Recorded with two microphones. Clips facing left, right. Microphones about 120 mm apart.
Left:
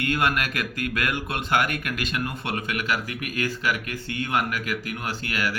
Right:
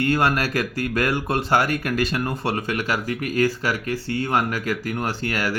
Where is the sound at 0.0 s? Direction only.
35° right (ahead or behind).